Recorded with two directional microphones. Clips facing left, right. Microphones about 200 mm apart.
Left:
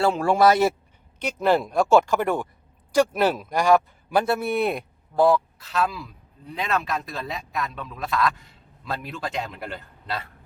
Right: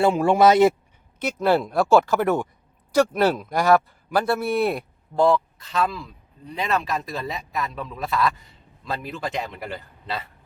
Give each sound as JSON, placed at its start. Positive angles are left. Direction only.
{"t": 0.0, "sound": "speech", "side_deg": -20}
{"t": 1.7, "sound": "speech", "side_deg": -5}
{"t": 2.9, "sound": "speech", "side_deg": 10}
{"t": 4.1, "sound": "a man's voice", "side_deg": 20}
{"t": 4.5, "sound": "speech", "side_deg": 0}